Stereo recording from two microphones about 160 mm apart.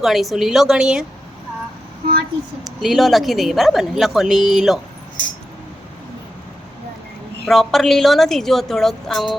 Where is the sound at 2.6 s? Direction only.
Centre (ahead or behind).